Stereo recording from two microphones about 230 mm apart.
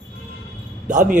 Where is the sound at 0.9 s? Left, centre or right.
Right.